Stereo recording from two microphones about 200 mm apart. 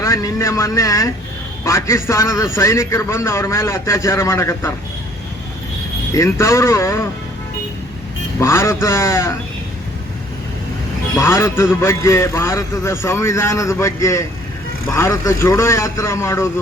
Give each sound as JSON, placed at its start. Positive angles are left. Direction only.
{"t": 0.0, "sound": "a man's voice", "side_deg": 15}
{"t": 6.1, "sound": "a man's voice", "side_deg": 15}
{"t": 8.4, "sound": "a man's voice", "side_deg": 15}
{"t": 11.2, "sound": "a man's voice", "side_deg": 15}